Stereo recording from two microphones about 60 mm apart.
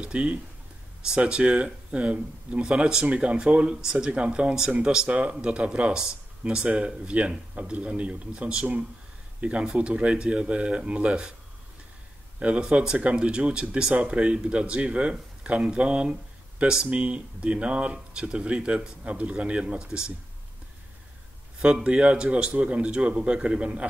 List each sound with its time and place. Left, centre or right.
0.0 s speech: centre
12.4 s speech: centre
21.5 s speech: centre